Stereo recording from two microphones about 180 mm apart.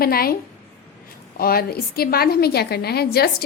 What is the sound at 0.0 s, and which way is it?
Speech, 55° left (ahead or behind).